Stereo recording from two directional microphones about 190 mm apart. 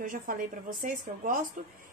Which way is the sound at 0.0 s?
45° right (ahead or behind).